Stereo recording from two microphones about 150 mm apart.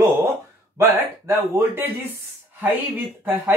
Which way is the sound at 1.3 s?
15° right (ahead or behind).